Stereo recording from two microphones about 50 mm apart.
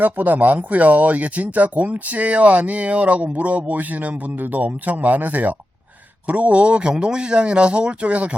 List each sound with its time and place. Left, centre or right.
0.0 s speech: right